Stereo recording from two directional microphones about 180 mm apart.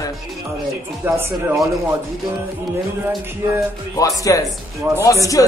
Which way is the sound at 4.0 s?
20° left (ahead or behind).